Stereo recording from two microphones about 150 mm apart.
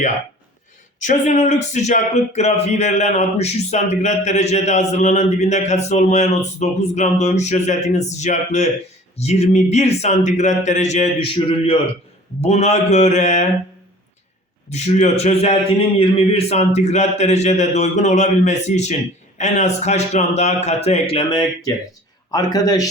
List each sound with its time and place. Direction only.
0.9 s speech: 55° left (ahead or behind)
11.3 s a man's voice: 35° left (ahead or behind)
12.4 s speech: 45° left (ahead or behind)
14.7 s a man's voice: 50° left (ahead or behind); by 22.9 s 25° left (ahead or behind)